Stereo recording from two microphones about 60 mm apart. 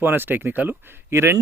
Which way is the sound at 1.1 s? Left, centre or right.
Right.